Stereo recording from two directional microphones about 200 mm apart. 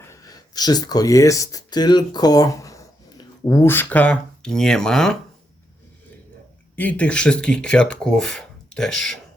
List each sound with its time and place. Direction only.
0.1 s speech: 15° left (ahead or behind)
6.7 s speech: 5° left (ahead or behind)